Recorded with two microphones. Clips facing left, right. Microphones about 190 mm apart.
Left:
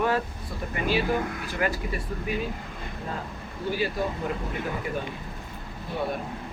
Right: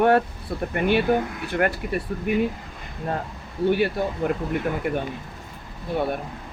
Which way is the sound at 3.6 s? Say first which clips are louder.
Right 6 dB; 65° right (ahead or behind).